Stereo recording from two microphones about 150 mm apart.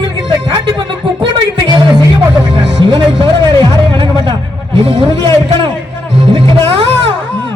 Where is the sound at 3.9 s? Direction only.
35° right (ahead or behind).